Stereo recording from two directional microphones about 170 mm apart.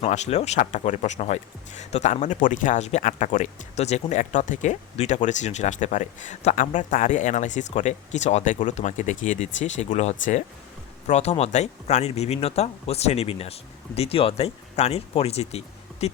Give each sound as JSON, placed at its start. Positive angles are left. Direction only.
{"t": 0.0, "sound": "speech", "side_deg": 40}